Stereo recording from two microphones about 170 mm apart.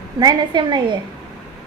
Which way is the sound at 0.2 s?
25° right (ahead or behind).